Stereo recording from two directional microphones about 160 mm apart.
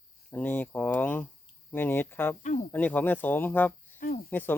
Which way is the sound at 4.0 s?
55° left (ahead or behind).